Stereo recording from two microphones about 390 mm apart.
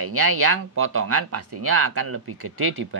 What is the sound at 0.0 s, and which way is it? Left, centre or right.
Speech, right.